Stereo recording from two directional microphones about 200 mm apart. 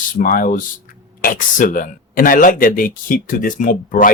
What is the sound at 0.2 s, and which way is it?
Speech, 45° left (ahead or behind).